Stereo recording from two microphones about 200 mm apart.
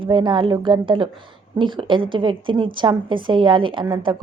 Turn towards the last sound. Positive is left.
turn(degrees=-25)  # may be behind; listen again after turning